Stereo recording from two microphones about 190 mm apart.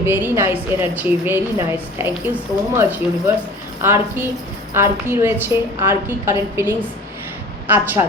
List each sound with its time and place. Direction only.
0.0 s a woman's voice: 10° right (ahead or behind)